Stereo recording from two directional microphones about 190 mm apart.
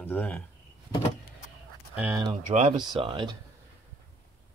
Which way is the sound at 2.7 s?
25° right (ahead or behind).